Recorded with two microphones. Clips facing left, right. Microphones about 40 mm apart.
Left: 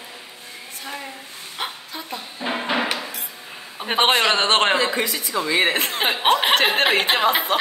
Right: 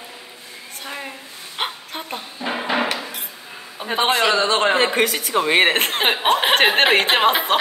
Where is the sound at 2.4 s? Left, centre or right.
Centre.